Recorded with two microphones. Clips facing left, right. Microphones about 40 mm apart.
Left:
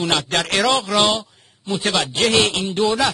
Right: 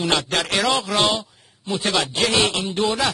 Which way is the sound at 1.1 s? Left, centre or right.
Centre.